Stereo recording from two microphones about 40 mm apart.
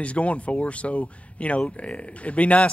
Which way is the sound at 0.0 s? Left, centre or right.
Left.